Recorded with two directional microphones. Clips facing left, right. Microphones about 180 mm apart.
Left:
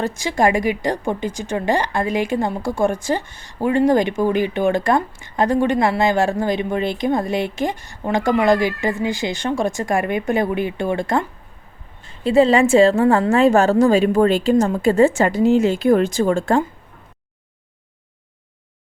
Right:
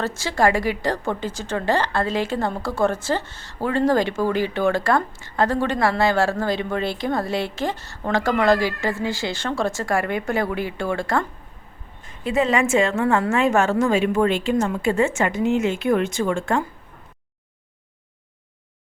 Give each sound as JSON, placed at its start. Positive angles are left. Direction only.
{"t": 0.0, "sound": "speech", "side_deg": 15}
{"t": 12.0, "sound": "a woman's voice", "side_deg": 30}